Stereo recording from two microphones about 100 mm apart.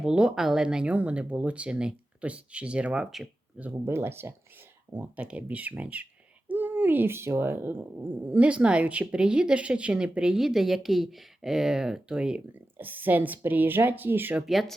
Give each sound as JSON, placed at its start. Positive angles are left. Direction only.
{"t": 0.0, "sound": "speech", "side_deg": -10}
{"t": 3.6, "sound": "a woman's voice", "side_deg": -20}
{"t": 14.4, "sound": "speech", "side_deg": 0}